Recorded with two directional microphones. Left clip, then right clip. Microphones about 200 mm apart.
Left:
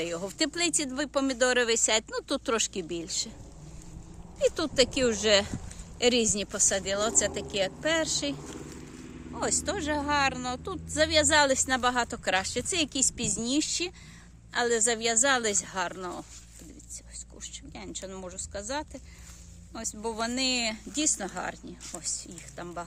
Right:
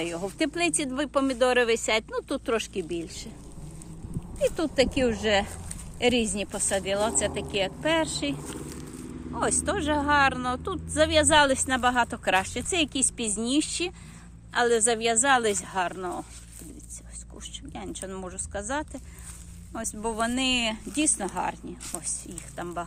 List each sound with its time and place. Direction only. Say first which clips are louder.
0.0 s speech: right 2 dB; 20° left (ahead or behind)
4.4 s speech: right 1 dB; 25° left (ahead or behind)
9.7 s speech: right 6 dB; centre (ahead or behind); by 16.2 s 20° left (ahead or behind)
17.7 s speech: right 3 dB; centre (ahead or behind)
19.9 s speech: right 4 dB; 5° left (ahead or behind)